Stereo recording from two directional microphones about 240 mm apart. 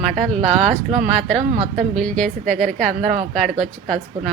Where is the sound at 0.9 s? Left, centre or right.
Right.